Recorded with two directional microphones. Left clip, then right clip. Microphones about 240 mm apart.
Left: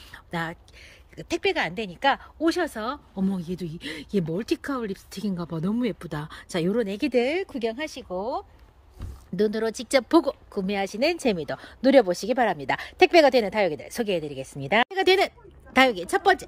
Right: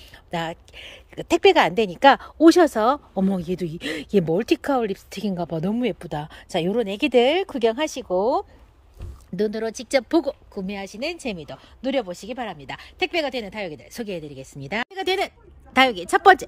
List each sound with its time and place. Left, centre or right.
0.1 s speech: centre
9.4 s speech: centre
16.2 s speech: centre